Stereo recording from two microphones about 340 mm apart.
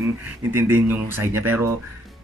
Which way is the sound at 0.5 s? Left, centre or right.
Centre.